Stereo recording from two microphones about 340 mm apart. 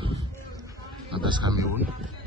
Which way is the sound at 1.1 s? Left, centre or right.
Centre.